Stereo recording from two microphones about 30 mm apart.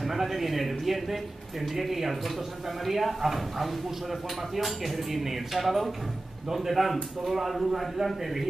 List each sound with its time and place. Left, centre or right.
0.0 s a man's voice: centre